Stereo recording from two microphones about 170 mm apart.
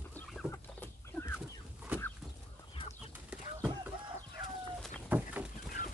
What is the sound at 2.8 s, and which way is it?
Bird, 35° left (ahead or behind).